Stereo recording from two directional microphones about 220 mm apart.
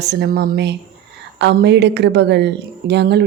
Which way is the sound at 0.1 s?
45° right (ahead or behind).